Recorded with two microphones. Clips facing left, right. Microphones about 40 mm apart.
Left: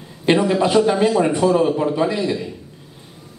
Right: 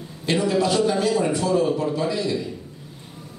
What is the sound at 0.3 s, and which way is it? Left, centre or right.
A man's voice, left.